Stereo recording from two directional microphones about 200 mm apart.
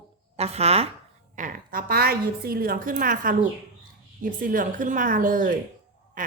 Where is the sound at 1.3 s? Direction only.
40° right (ahead or behind).